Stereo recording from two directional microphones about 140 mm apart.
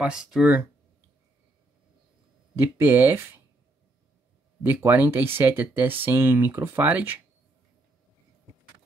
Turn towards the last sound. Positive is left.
turn(degrees=-10)  # may be behind; listen again after turning